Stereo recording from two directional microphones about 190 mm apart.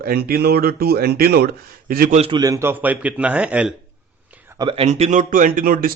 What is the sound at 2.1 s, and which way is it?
Speech, 30° right (ahead or behind).